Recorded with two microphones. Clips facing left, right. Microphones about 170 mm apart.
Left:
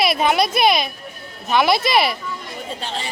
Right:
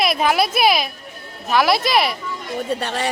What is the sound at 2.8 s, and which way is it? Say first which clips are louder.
Speech: right 5 dB; 65° right (ahead or behind).